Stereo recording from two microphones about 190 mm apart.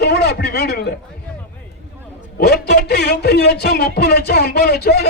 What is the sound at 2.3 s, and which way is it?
A man's voice, 55° left (ahead or behind).